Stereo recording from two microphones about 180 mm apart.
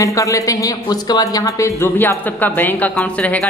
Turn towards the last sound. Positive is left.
turn(degrees=10)  # may be behind; listen again after turning